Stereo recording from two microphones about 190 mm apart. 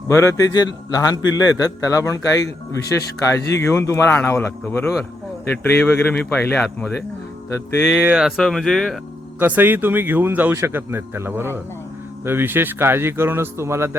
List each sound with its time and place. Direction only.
0.1 s a man's voice: 15° left (ahead or behind)
7.9 s speech: 5° right (ahead or behind)
9.4 s speech: 10° right (ahead or behind)